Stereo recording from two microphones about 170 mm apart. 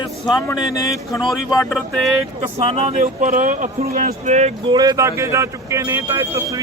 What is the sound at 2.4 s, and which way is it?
Speech, 40° right (ahead or behind).